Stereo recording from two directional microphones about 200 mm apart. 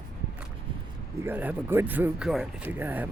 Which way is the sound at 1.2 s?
10° right (ahead or behind).